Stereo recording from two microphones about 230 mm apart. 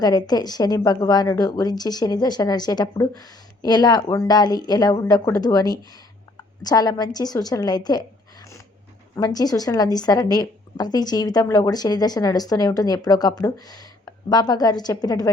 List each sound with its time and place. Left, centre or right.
0.0 s a woman's voice: centre